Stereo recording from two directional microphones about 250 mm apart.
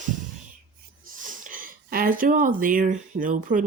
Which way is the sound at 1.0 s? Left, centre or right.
Right.